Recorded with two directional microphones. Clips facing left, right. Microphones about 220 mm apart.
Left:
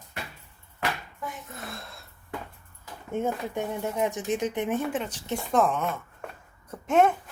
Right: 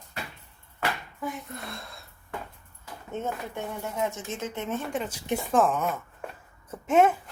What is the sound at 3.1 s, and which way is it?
Speech, 15° left (ahead or behind).